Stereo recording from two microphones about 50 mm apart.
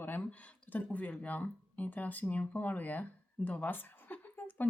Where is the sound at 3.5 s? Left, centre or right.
Left.